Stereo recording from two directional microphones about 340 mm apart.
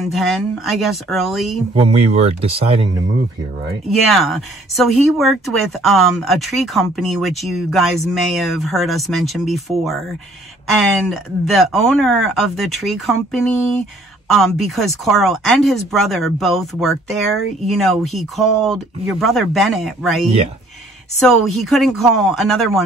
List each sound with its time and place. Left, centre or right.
0.0 s speech: centre
1.8 s speech: centre
3.9 s speech: centre